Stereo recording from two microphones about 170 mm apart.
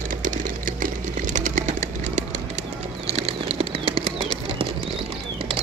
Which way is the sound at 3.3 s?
35° right (ahead or behind).